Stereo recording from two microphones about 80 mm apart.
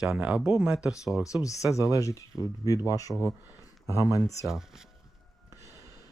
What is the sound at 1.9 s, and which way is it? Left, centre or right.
Speech, left.